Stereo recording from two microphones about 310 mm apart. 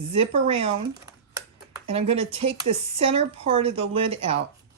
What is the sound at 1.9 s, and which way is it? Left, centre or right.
Speech, centre.